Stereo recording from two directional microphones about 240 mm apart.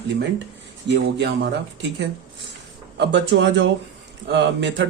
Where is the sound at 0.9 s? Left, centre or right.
Right.